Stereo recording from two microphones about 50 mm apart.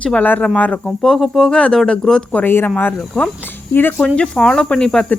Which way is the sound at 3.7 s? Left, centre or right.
Left.